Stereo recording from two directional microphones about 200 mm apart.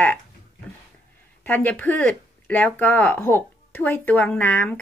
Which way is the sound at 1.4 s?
10° left (ahead or behind).